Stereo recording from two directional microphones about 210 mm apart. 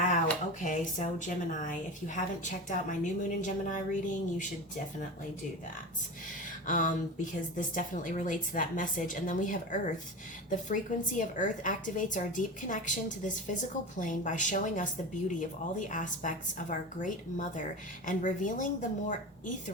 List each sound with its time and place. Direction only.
0.6 s speech: 35° left (ahead or behind)
6.7 s speech: 40° left (ahead or behind)